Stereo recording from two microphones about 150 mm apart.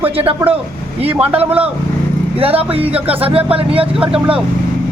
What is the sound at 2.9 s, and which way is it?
Speech, 40° right (ahead or behind).